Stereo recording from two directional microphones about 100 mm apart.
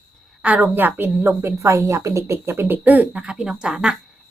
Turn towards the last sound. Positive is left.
turn(degrees=-10)  # may be behind; listen again after turning